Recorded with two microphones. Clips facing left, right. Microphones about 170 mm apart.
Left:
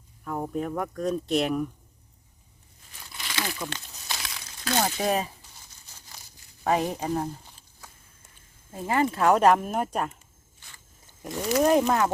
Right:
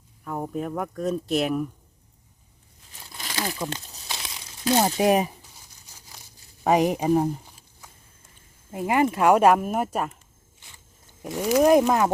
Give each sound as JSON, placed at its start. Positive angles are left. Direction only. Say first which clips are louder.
{"t": 0.3, "sound": "speech", "louder": "even", "side_deg": -5}
{"t": 3.2, "sound": "crumpling", "louder": "right 3 dB", "side_deg": -40}
{"t": 3.6, "sound": "speech", "louder": "right 4 dB", "side_deg": -35}
{"t": 4.2, "sound": "a sound", "louder": "right 6 dB", "side_deg": -25}
{"t": 6.7, "sound": "speech", "louder": "right 6 dB", "side_deg": -15}
{"t": 11.2, "sound": "speech", "louder": "right 4 dB", "side_deg": -5}